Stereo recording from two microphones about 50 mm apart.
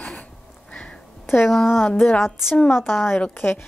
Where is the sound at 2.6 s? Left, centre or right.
Centre.